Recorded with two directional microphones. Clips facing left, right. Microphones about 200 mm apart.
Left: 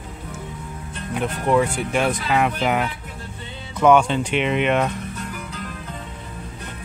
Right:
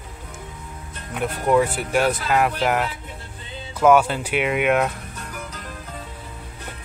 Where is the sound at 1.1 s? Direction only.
5° right (ahead or behind).